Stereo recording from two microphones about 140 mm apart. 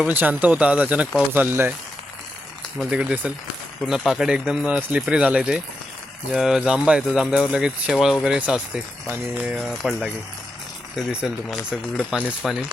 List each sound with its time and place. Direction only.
0.1 s speech: 15° right (ahead or behind)
2.7 s speech: 5° right (ahead or behind)